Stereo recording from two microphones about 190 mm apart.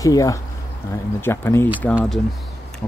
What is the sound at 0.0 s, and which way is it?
Speech, 15° left (ahead or behind).